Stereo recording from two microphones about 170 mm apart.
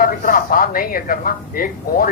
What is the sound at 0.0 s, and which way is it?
A man's voice, 55° left (ahead or behind).